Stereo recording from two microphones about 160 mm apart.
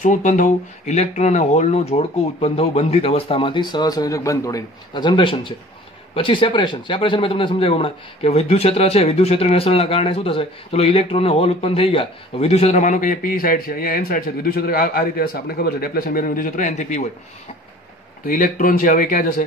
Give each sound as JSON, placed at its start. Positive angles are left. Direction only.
{"t": 0.0, "sound": "a man's voice", "side_deg": 50}
{"t": 18.2, "sound": "speech", "side_deg": 60}